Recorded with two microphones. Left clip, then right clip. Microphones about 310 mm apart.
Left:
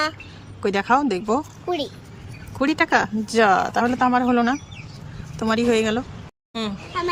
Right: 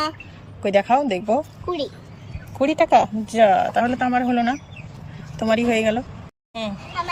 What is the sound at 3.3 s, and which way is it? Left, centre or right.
Speech, left.